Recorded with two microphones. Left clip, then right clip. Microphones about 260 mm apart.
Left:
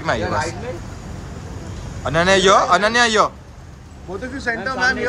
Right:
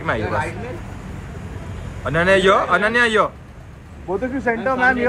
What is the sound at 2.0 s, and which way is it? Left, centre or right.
Speech, centre.